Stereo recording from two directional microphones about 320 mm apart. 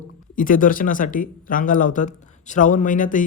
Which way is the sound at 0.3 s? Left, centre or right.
Left.